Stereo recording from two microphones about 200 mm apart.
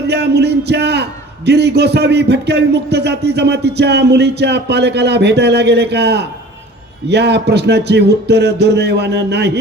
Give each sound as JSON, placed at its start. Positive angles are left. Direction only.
{"t": 0.1, "sound": "a man's voice", "side_deg": -55}